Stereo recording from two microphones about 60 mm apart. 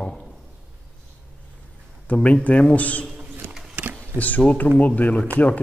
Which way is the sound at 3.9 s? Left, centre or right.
Left.